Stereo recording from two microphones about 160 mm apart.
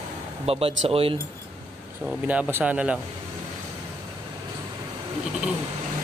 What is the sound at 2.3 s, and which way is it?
Speech, 10° right (ahead or behind).